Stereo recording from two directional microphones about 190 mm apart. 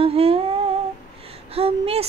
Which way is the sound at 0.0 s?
30° right (ahead or behind).